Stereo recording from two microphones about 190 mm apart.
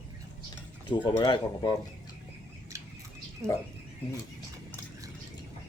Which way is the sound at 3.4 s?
15° right (ahead or behind).